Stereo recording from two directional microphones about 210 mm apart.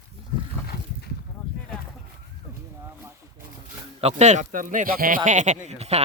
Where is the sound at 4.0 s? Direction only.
30° right (ahead or behind).